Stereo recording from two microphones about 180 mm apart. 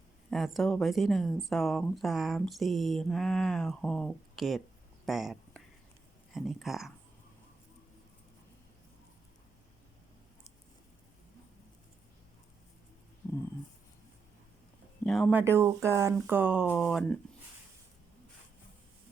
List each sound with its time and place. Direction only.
0.3 s speech: centre (ahead or behind)
5.0 s a sound: centre (ahead or behind)
6.3 s speech: centre (ahead or behind)
13.2 s a sound: 20° left (ahead or behind)
15.0 s speech: 5° left (ahead or behind)
15.3 s speech: 10° right (ahead or behind)
16.7 s speech: 5° left (ahead or behind)